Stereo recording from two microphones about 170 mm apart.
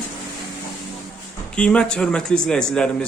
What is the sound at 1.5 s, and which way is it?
Speech, 5° left (ahead or behind).